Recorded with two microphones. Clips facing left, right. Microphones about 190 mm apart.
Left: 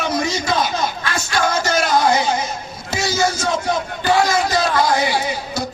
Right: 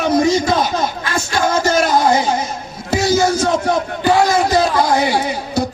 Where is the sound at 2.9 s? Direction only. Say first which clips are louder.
Right 6 dB; 55° right (ahead or behind).